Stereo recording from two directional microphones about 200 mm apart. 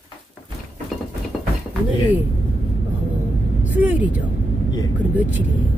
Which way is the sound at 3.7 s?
10° right (ahead or behind).